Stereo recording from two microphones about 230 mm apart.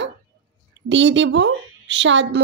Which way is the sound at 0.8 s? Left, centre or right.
Right.